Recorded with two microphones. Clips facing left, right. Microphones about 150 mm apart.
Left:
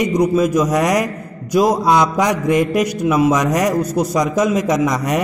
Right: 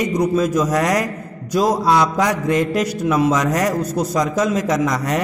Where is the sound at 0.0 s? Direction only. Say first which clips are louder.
Left 3 dB; 10° left (ahead or behind).